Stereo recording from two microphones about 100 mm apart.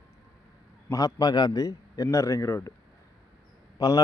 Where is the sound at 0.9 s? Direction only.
40° left (ahead or behind).